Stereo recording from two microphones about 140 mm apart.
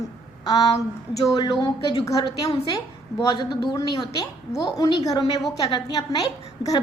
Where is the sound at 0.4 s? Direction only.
30° left (ahead or behind).